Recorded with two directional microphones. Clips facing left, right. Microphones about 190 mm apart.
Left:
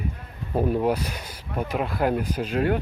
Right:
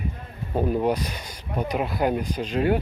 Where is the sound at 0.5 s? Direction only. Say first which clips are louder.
Even; centre (ahead or behind).